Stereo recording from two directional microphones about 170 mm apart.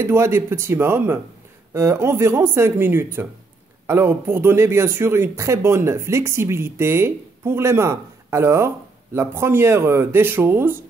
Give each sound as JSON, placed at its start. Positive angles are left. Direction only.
{"t": 0.0, "sound": "speech", "side_deg": -15}